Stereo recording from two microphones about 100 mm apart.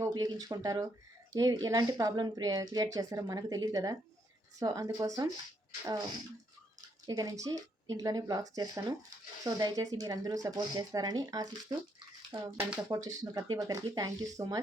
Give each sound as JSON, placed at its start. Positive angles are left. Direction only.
{"t": 0.0, "sound": "speech", "side_deg": -40}